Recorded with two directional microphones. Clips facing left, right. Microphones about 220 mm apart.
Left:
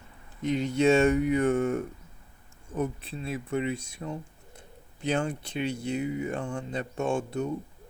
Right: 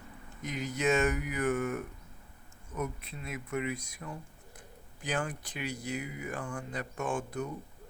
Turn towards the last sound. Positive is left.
turn(degrees=25)  # may be behind; listen again after turning